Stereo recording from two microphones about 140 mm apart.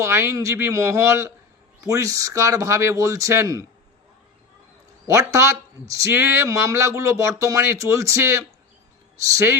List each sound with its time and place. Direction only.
0.0 s speech: 20° right (ahead or behind)
5.0 s speech: 20° right (ahead or behind)